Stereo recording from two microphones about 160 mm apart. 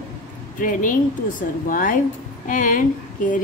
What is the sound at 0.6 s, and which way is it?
A woman's voice, 55° left (ahead or behind).